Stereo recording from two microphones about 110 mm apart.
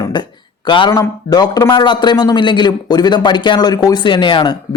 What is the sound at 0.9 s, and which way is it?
A man's voice, 35° left (ahead or behind).